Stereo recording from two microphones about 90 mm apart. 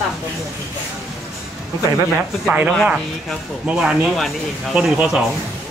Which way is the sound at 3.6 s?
10° right (ahead or behind).